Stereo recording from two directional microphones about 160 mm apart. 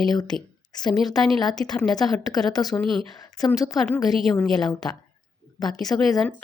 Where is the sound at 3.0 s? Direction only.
25° left (ahead or behind).